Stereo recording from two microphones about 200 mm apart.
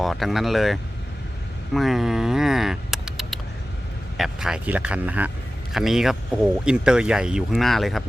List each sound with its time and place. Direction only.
0.0 s speech: centre (ahead or behind)